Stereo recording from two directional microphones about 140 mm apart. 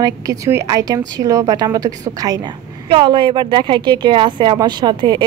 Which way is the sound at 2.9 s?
40° right (ahead or behind).